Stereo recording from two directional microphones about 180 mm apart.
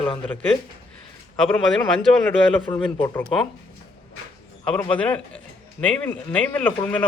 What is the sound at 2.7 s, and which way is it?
Speech, 30° left (ahead or behind).